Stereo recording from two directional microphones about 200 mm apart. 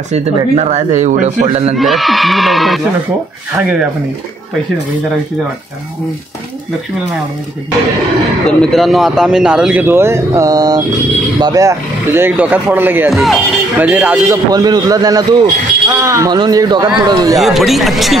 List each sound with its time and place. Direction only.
0.1 s speech: 35° right (ahead or behind)
1.8 s speech: centre (ahead or behind)
8.5 s speech: 5° left (ahead or behind); by 17.4 s 20° right (ahead or behind)
17.4 s speech: centre (ahead or behind)